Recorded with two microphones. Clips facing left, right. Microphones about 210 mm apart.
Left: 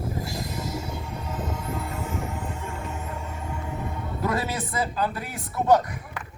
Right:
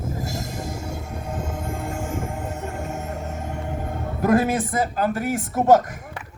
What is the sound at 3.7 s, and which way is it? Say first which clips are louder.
Speech: right 3 dB; 45° right (ahead or behind).